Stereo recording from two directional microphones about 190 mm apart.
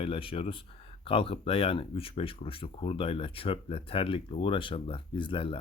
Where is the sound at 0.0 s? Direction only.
30° left (ahead or behind).